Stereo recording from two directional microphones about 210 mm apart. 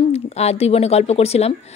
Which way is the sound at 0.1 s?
30° left (ahead or behind).